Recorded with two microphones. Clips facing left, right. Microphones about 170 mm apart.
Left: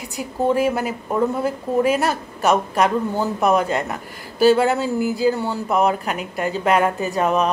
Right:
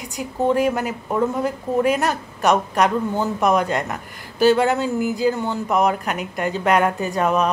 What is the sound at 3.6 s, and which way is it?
Speech, 35° left (ahead or behind).